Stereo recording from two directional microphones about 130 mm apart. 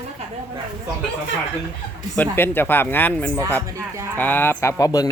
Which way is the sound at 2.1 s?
15° left (ahead or behind).